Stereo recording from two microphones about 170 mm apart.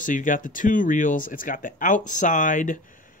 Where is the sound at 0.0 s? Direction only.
50° left (ahead or behind).